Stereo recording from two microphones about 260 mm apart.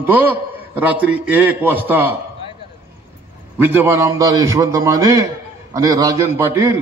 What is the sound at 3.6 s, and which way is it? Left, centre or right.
A man's voice, centre.